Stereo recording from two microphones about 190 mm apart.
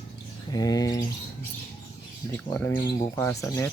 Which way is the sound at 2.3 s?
10° left (ahead or behind).